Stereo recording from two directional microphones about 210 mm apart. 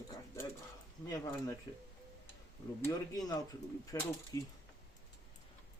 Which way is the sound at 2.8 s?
15° left (ahead or behind).